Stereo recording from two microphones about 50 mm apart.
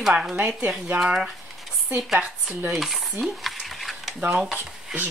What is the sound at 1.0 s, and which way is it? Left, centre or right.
Speech, centre.